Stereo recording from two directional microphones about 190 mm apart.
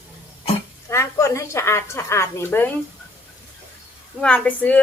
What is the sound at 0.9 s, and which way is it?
A woman's voice, 15° left (ahead or behind).